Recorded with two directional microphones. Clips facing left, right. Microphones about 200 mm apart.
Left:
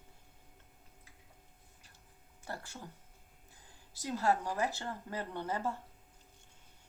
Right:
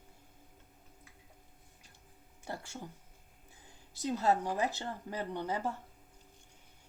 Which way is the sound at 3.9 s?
20° right (ahead or behind).